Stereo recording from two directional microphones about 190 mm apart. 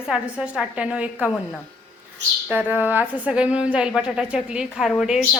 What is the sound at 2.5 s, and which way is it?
Speech, 10° right (ahead or behind).